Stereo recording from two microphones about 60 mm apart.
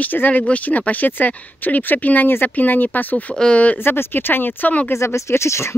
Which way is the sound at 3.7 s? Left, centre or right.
Left.